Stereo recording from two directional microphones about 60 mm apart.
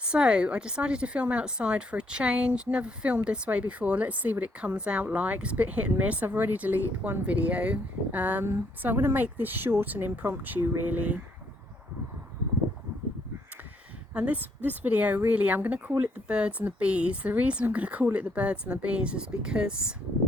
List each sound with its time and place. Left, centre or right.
0.0 s a woman's voice: centre
14.1 s a woman's voice: right